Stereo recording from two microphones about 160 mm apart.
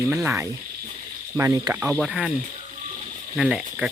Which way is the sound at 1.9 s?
5° right (ahead or behind).